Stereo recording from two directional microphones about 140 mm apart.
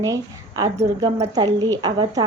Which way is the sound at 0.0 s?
25° right (ahead or behind).